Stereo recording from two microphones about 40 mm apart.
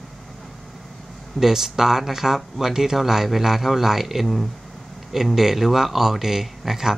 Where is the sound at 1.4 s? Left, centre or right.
Centre.